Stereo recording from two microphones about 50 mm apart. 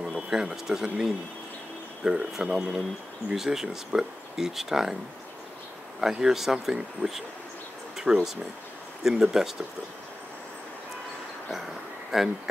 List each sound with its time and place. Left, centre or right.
0.0 s a sound: centre
0.4 s speech: centre
5.9 s speech: centre
12.1 s speech: centre